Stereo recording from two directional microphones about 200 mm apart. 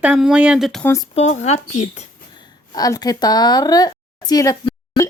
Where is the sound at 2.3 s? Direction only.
20° left (ahead or behind).